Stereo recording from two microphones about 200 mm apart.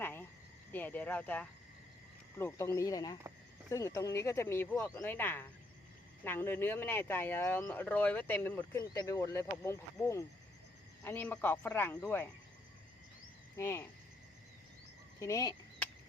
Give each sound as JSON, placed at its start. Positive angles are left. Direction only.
{"t": 0.0, "sound": "cricket", "side_deg": 10}
{"t": 0.7, "sound": "speech", "side_deg": 10}
{"t": 13.6, "sound": "speech", "side_deg": 15}
{"t": 15.2, "sound": "fowl", "side_deg": 15}